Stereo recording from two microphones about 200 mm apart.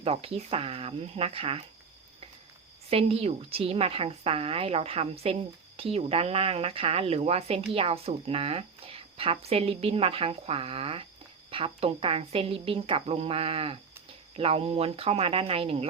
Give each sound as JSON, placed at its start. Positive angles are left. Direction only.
{"t": 0.0, "sound": "a woman's voice", "side_deg": -30}
{"t": 2.9, "sound": "a woman's voice", "side_deg": -30}